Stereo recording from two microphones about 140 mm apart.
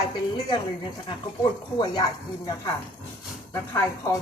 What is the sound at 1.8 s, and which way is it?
Speech, 30° left (ahead or behind).